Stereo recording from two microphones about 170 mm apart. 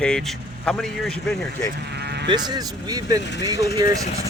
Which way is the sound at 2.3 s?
25° right (ahead or behind).